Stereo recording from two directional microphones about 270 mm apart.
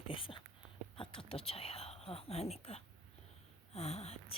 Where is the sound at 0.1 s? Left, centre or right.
Centre.